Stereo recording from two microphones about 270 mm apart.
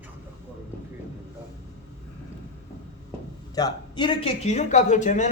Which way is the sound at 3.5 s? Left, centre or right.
Centre.